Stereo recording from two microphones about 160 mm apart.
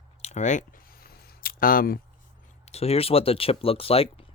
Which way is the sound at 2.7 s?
40° left (ahead or behind).